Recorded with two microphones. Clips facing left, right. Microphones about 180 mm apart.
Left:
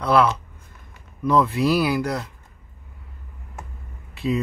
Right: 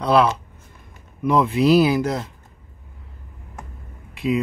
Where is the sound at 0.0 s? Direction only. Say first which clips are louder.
Right 1 dB; 20° right (ahead or behind).